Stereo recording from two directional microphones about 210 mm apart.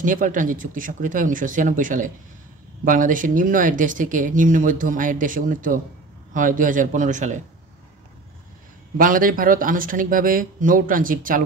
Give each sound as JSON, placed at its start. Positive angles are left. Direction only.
{"t": 0.0, "sound": "speech", "side_deg": -40}
{"t": 8.9, "sound": "speech", "side_deg": -40}